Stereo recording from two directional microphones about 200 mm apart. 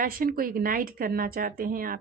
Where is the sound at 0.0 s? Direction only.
45° right (ahead or behind).